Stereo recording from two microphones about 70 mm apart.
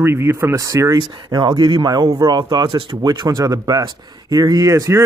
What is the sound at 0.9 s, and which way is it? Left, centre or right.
Speech, right.